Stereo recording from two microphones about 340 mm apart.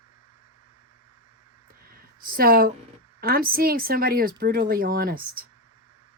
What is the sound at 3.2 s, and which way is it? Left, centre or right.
Speech, right.